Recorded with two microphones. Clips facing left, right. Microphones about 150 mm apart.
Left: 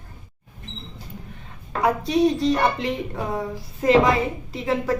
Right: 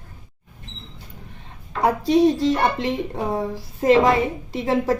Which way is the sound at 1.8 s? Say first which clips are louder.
Right 3 dB; 25° right (ahead or behind).